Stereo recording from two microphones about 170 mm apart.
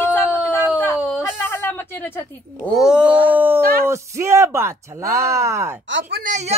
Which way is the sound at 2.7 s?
5° right (ahead or behind).